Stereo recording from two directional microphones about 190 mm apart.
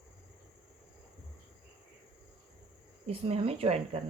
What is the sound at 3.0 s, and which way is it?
Speech, 30° right (ahead or behind).